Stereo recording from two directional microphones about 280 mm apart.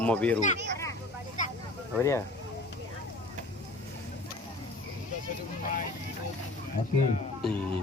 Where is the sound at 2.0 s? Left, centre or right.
Centre.